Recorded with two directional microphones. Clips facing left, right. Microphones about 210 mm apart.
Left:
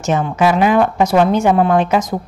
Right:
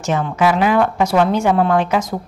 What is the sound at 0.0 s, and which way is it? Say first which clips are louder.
A woman's voice: left 2 dB; 20° left (ahead or behind).